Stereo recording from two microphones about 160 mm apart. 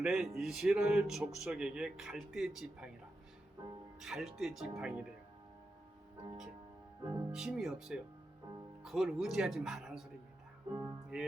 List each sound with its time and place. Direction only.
0.0 s speech: centre (ahead or behind)
4.0 s speech: centre (ahead or behind)
7.3 s speech: 5° right (ahead or behind)
11.1 s speech: 5° right (ahead or behind)